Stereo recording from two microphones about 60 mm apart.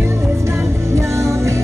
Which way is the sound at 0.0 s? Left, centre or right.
Right.